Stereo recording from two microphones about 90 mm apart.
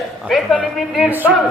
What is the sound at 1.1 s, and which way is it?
Speech, 20° right (ahead or behind).